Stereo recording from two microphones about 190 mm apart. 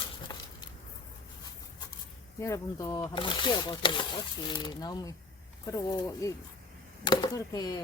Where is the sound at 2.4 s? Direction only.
20° left (ahead or behind).